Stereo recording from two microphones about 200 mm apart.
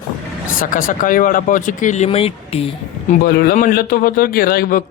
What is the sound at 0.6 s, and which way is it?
A man's voice, 45° left (ahead or behind).